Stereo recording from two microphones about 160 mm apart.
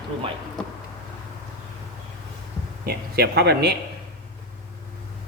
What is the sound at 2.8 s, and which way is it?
Speech, 85° right.